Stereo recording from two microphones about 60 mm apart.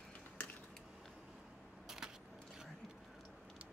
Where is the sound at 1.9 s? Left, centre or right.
Centre.